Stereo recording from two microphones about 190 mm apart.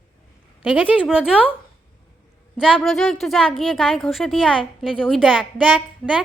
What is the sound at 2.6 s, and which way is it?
A woman's voice, 5° right (ahead or behind).